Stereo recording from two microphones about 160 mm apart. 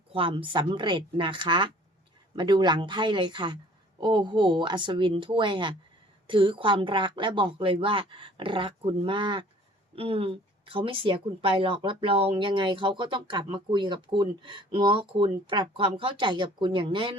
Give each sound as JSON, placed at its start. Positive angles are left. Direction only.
{"t": 0.1, "sound": "a woman's voice", "side_deg": -35}